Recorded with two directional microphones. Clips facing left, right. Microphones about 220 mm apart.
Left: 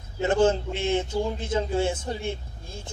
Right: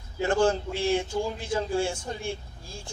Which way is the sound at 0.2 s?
20° left (ahead or behind).